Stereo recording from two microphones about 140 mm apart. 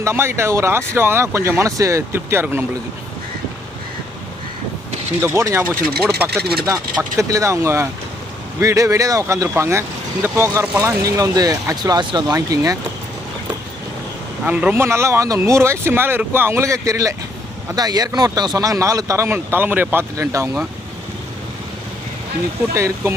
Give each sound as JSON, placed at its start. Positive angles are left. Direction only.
{"t": 0.0, "sound": "speech", "side_deg": -20}
{"t": 5.2, "sound": "speech", "side_deg": -20}
{"t": 6.0, "sound": "speech", "side_deg": -5}
{"t": 7.2, "sound": "speech", "side_deg": -20}
{"t": 14.4, "sound": "speech", "side_deg": -10}
{"t": 22.7, "sound": "speech", "side_deg": -20}